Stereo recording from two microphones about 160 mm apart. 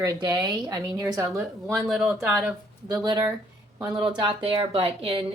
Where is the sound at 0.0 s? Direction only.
20° right (ahead or behind).